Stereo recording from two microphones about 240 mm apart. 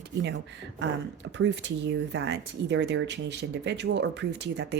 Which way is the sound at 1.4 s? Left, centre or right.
Right.